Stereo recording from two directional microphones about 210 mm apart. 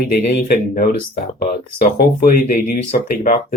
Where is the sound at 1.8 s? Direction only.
45° left (ahead or behind).